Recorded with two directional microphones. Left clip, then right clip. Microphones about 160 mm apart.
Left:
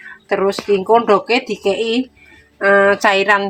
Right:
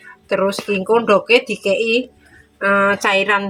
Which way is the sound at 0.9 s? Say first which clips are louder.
Right 1 dB; 55° left (ahead or behind).